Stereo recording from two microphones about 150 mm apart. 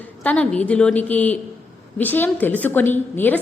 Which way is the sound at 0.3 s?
10° left (ahead or behind).